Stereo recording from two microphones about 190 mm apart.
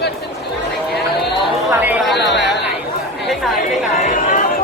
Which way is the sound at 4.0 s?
45° left (ahead or behind).